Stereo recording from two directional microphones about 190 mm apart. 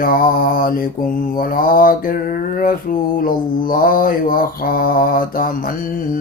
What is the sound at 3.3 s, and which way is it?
Mantra, 50° left (ahead or behind).